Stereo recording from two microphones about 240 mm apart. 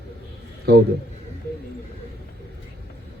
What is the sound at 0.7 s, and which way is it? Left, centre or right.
Speech, right.